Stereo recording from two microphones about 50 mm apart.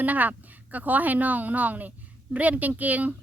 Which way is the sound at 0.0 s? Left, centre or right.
Right.